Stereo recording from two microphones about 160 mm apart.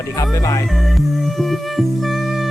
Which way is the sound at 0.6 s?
Centre (ahead or behind).